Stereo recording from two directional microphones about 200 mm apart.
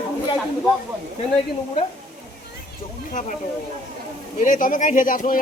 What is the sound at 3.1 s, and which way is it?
Speech, 40° left (ahead or behind).